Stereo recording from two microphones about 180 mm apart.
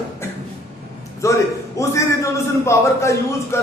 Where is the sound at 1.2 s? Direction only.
15° left (ahead or behind).